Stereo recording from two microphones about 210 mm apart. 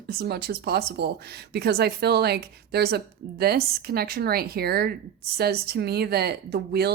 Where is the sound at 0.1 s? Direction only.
50° right (ahead or behind).